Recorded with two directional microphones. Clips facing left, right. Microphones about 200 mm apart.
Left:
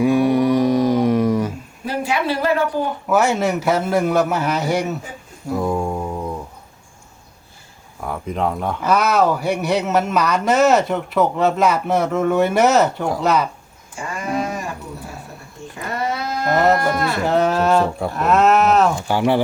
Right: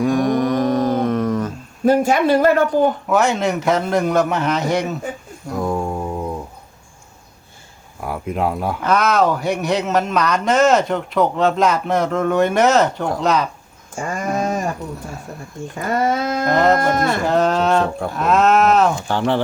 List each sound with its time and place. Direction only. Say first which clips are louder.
0.0 s a sound: left 2 dB; 10° left (ahead or behind)
1.8 s speech: right 7 dB; 45° right (ahead or behind)
3.1 s speech: even; 5° left (ahead or behind)
5.5 s a sound: left 1 dB; centre (ahead or behind)
8.0 s speech: right 1 dB; 5° right (ahead or behind)
8.8 s speech: even; 5° left (ahead or behind)
13.9 s a sound: right 2 dB; 45° right (ahead or behind)
15.7 s speech: right 5 dB; 45° right (ahead or behind)
16.5 s speech: even; 5° left (ahead or behind)
16.9 s speech: right 3 dB; 45° right (ahead or behind)
17.2 s speech: left 1 dB; 5° left (ahead or behind)